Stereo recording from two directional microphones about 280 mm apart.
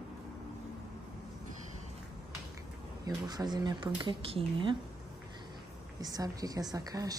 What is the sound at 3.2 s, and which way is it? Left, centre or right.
A woman's voice, centre.